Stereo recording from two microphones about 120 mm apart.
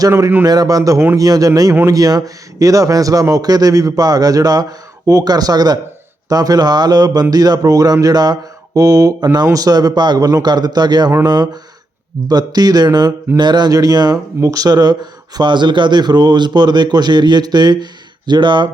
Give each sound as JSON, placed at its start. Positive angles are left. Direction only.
{"t": 0.0, "sound": "a man's voice", "side_deg": -25}
{"t": 0.4, "sound": "a man's voice", "side_deg": -30}
{"t": 12.3, "sound": "speech", "side_deg": -35}